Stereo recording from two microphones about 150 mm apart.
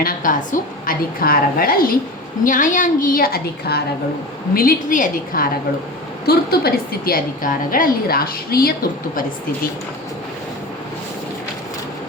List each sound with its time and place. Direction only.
0.0 s a woman's voice: 65° left (ahead or behind)
2.4 s a woman's voice: 60° left (ahead or behind); by 3.8 s 90° left
4.5 s a woman's voice: 65° left (ahead or behind)
6.2 s a woman's voice: 90° left